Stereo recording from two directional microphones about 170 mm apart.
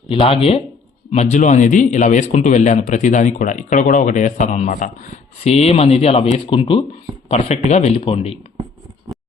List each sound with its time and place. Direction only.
0.1 s a man's voice: 35° left (ahead or behind)